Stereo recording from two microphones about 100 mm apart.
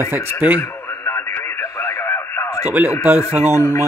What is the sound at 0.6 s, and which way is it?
Radio, 35° left (ahead or behind).